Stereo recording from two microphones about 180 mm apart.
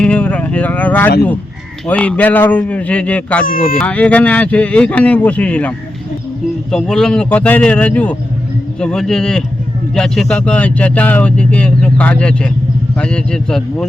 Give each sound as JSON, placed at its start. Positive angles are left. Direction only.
{"t": 0.0, "sound": "speech", "side_deg": 5}
{"t": 3.4, "sound": "speech", "side_deg": 50}
{"t": 3.8, "sound": "a man's voice", "side_deg": 10}